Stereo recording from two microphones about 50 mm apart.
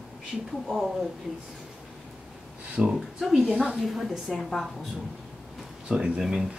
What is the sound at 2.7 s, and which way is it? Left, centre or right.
Speech, centre.